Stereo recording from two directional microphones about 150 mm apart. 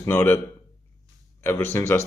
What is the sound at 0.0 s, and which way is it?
Speech, 15° left (ahead or behind).